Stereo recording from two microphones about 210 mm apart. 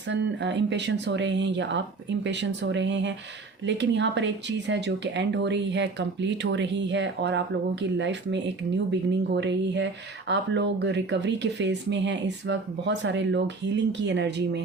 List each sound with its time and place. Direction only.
0.1 s speech: 55° right (ahead or behind)